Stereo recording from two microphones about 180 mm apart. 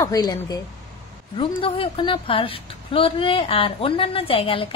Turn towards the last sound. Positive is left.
turn(degrees=30)  # may be behind; listen again after turning